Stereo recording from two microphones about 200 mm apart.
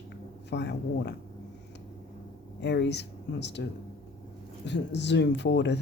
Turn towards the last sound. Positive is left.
turn(degrees=60)  # may be behind; listen again after turning